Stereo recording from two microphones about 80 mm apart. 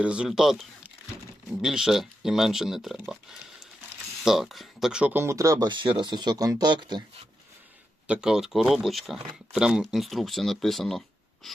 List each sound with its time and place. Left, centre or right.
0.0 s speech: centre
4.2 s speech: centre
5.1 s speech: right
5.6 s speech: right
8.0 s speech: centre